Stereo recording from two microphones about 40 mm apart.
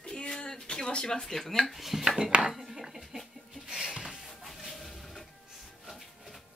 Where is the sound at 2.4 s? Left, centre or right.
Centre.